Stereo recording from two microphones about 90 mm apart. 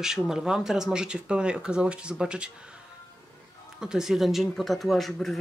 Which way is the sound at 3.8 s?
5° right (ahead or behind).